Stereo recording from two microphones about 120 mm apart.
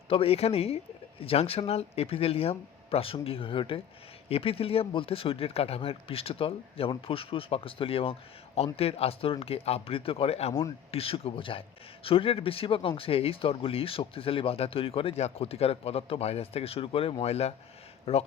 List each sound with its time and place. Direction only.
0.1 s speech: 55° left (ahead or behind)